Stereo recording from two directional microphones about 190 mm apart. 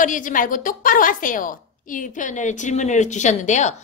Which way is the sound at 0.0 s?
45° left (ahead or behind).